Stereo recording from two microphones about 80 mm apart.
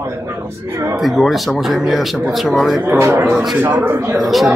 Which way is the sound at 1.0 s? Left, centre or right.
Centre.